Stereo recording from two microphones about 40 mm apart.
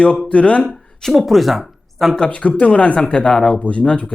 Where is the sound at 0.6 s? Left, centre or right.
Centre.